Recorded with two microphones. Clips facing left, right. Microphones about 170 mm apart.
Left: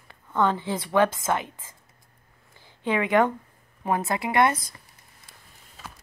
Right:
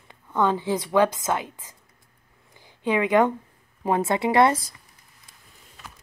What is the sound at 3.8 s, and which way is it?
Speech, 25° right (ahead or behind).